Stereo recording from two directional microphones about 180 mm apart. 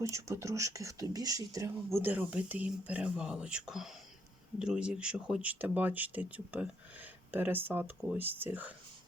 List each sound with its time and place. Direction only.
0.0 s speech: 15° right (ahead or behind)